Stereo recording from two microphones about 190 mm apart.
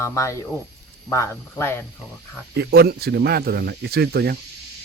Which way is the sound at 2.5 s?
60° right (ahead or behind).